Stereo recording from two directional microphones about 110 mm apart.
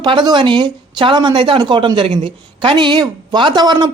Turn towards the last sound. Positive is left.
turn(degrees=-40)  # may be behind; listen again after turning